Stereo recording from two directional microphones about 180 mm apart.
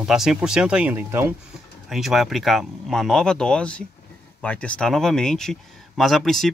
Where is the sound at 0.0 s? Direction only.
5° right (ahead or behind).